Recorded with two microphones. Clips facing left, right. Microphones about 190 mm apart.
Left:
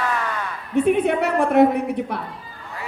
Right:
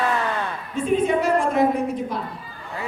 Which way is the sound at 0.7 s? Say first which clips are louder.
Left 3 dB; 65° left (ahead or behind).